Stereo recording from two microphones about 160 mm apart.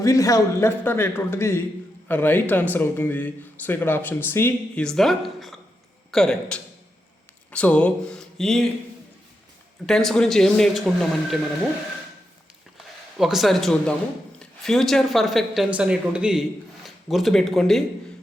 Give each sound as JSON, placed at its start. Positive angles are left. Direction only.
{"t": 0.0, "sound": "speech", "side_deg": 20}
{"t": 9.8, "sound": "speech", "side_deg": 5}
{"t": 12.7, "sound": "speech", "side_deg": 0}